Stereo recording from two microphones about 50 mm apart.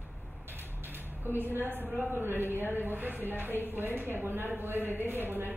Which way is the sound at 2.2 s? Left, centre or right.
Right.